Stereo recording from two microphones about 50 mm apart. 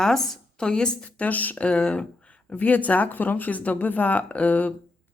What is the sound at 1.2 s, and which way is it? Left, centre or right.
Speech, left.